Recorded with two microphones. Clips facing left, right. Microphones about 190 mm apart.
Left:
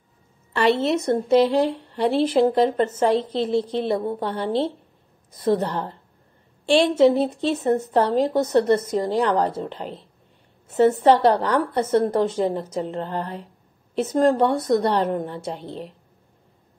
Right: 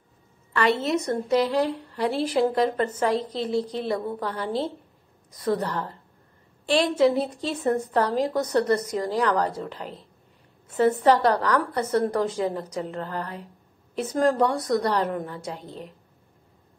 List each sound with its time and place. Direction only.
0.5 s a woman's voice: 30° left (ahead or behind)
7.0 s a woman's voice: 25° left (ahead or behind)
11.1 s a woman's voice: 25° left (ahead or behind)